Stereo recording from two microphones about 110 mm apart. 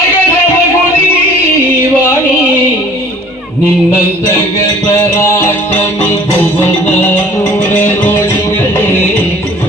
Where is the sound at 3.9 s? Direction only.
20° left (ahead or behind).